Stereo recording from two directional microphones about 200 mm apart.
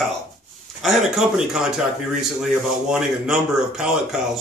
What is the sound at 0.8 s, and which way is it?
Speech, centre (ahead or behind).